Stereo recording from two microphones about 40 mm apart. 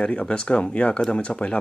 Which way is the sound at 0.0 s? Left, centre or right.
Left.